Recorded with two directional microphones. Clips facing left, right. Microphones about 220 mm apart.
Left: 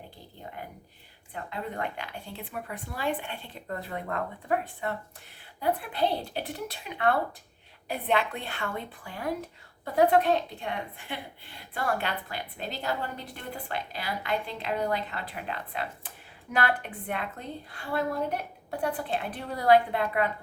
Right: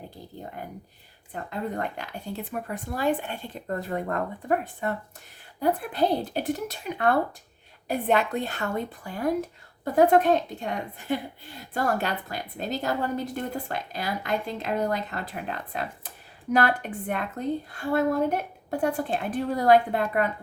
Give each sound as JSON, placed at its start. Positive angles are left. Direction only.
{"t": 1.3, "sound": "a woman's voice", "side_deg": -40}